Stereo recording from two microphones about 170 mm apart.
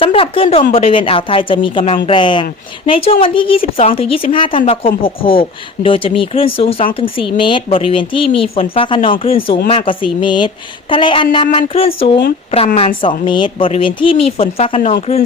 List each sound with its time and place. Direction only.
0.0 s a woman's voice: 35° left (ahead or behind)